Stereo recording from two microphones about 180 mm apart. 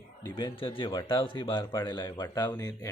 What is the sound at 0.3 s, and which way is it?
Speech, 25° left (ahead or behind).